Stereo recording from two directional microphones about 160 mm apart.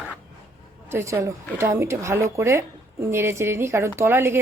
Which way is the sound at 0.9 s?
15° right (ahead or behind).